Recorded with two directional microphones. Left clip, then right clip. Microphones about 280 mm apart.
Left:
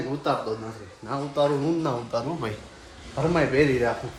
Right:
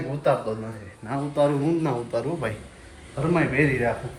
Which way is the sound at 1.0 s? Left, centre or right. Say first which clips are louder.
Right 1 dB; centre.